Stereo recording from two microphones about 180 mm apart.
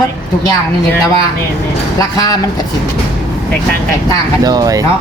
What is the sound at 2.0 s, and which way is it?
Speech, 20° left (ahead or behind).